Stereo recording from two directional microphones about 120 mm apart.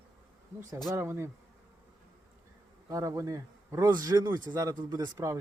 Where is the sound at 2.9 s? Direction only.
25° right (ahead or behind).